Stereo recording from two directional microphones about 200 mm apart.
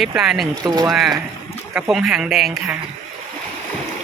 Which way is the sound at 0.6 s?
20° right (ahead or behind).